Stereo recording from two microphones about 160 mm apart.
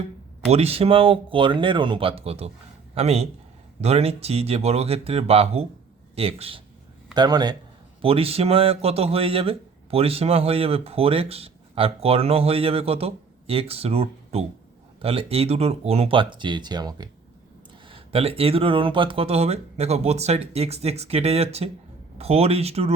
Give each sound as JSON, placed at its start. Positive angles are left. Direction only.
{"t": 0.5, "sound": "a man's voice", "side_deg": -40}
{"t": 7.2, "sound": "speech", "side_deg": -25}
{"t": 8.0, "sound": "speech", "side_deg": -35}